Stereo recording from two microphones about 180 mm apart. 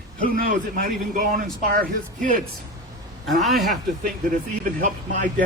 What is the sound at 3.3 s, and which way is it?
Speech, centre (ahead or behind).